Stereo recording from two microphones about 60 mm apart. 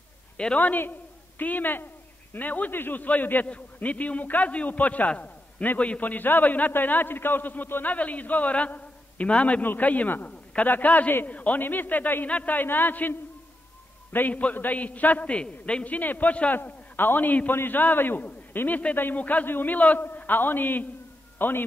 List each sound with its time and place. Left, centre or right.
0.6 s a man's voice: left